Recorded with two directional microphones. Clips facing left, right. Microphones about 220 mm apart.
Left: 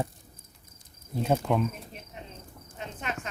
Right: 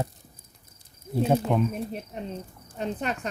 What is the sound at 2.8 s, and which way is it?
Speech, 35° right (ahead or behind).